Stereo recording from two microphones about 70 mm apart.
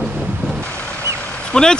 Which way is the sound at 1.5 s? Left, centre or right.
Centre.